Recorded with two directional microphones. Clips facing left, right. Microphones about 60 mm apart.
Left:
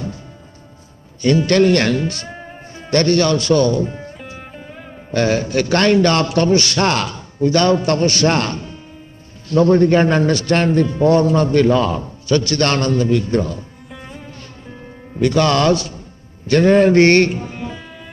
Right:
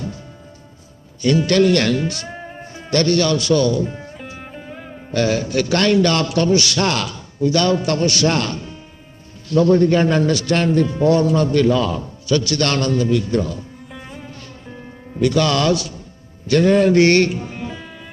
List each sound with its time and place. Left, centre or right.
1.2 s a man's voice: left
2.3 s music: centre
2.9 s a man's voice: left
4.4 s music: centre
5.1 s a man's voice: left
13.8 s music: centre
15.1 s a man's voice: left
17.5 s music: centre